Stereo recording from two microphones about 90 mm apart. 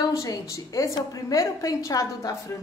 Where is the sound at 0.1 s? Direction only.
35° left (ahead or behind).